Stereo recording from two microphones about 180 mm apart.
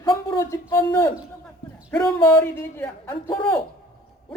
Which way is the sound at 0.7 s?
15° left (ahead or behind).